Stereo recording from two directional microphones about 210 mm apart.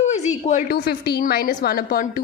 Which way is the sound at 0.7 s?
50° left (ahead or behind).